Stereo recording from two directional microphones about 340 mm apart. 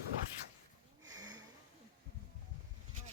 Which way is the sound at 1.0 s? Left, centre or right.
Centre.